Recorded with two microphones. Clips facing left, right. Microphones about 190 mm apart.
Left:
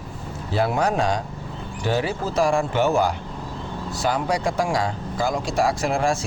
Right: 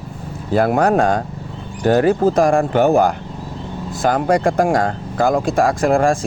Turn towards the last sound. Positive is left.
turn(degrees=-50)  # may be behind; listen again after turning